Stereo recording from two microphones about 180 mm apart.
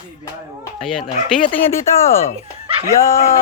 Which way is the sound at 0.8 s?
Centre (ahead or behind).